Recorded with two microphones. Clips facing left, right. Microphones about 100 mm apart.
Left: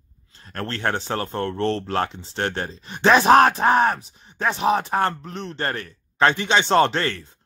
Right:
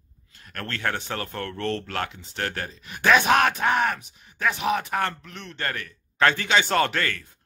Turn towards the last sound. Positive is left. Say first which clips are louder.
# left 4 dB
turn(degrees=25)  # may be behind; listen again after turning